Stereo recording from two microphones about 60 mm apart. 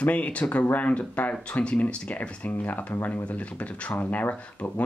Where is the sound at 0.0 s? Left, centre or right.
Left.